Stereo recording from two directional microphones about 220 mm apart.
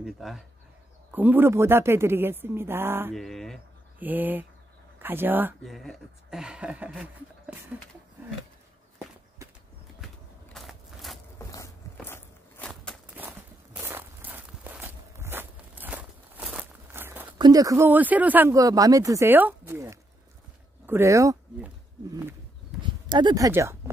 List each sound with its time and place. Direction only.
0.0 s speech: centre (ahead or behind)
3.2 s speech: centre (ahead or behind)
10.5 s a sound: centre (ahead or behind)
11.3 s a sound: 15° left (ahead or behind)
12.1 s walk: 5° left (ahead or behind)
13.7 s walk: 10° right (ahead or behind)
17.4 s speech: 15° right (ahead or behind)
23.0 s speech: 20° right (ahead or behind)